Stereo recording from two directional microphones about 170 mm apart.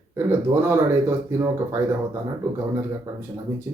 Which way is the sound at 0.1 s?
15° right (ahead or behind).